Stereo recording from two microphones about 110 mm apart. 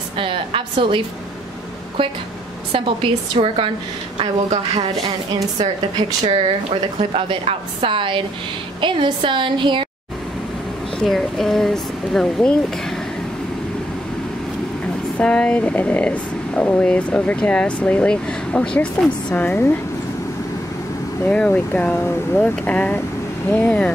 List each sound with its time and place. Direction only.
0.2 s a woman's voice: 55° right (ahead or behind)
6.3 s a woman's voice: 55° right (ahead or behind)
11.0 s speech: centre (ahead or behind)
15.1 s speech: 10° left (ahead or behind)
21.3 s speech: 10° left (ahead or behind)